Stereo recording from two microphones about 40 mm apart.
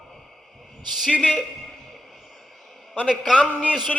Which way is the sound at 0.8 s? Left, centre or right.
Centre.